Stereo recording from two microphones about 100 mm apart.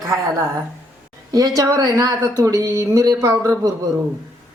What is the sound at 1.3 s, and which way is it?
A woman's voice, 40° right (ahead or behind).